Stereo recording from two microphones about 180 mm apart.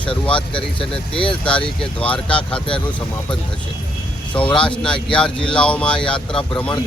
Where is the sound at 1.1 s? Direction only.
30° left (ahead or behind).